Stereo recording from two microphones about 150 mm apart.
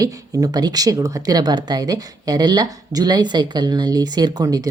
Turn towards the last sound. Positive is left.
turn(degrees=-25)  # may be behind; listen again after turning